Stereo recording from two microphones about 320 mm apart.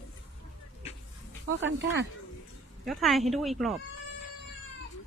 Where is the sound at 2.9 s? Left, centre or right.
Centre.